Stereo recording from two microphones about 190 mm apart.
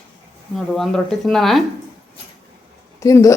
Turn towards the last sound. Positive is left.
turn(degrees=15)  # may be behind; listen again after turning